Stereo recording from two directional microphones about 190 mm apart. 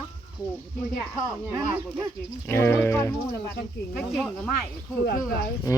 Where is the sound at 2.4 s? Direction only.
10° left (ahead or behind).